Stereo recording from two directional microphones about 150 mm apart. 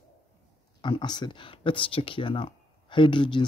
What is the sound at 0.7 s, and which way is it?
Speech, 30° left (ahead or behind).